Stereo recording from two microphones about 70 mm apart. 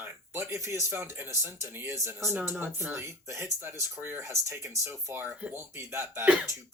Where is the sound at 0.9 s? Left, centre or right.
Right.